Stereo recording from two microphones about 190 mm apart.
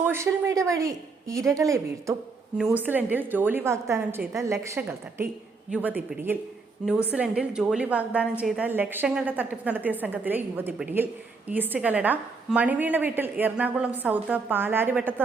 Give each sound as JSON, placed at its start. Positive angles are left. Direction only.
{"t": 0.0, "sound": "a woman's voice", "side_deg": -15}
{"t": 2.6, "sound": "a woman's voice", "side_deg": -5}